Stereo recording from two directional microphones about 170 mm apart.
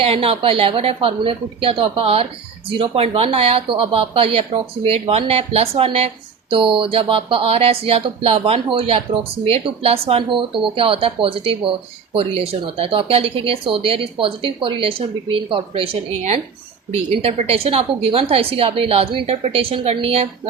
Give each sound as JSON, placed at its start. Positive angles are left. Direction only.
{"t": 0.0, "sound": "speech", "side_deg": -35}